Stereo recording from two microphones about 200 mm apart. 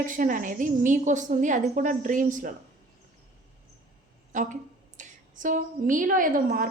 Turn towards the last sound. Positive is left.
turn(degrees=-45)  # may be behind; listen again after turning